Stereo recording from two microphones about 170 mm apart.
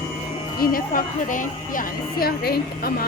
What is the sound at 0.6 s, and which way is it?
A woman's voice, 55° left (ahead or behind).